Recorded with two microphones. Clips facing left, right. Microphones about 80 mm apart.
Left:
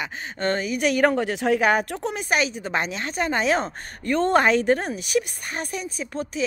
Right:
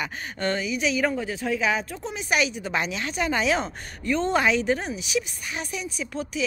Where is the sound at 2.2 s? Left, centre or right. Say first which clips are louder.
Right 1 dB; left.